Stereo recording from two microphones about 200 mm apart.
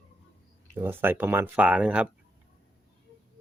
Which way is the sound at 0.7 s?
10° right (ahead or behind).